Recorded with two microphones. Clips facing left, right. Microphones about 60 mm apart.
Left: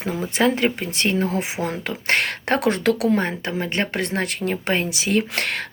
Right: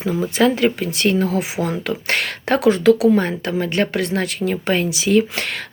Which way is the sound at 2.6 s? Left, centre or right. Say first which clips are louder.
Right 8 dB; left.